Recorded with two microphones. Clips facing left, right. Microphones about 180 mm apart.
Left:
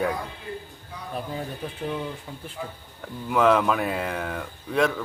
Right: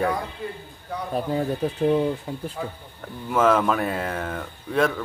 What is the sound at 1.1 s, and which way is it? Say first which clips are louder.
Speech: right 7 dB; 40° right (ahead or behind).